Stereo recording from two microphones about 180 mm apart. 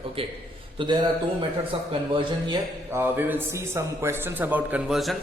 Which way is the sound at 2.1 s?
25° right (ahead or behind).